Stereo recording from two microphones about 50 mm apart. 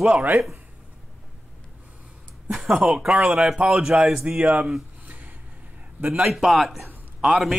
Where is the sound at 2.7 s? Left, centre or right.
Centre.